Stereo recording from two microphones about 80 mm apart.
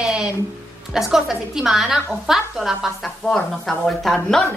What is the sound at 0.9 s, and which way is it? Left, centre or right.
A woman's voice, centre.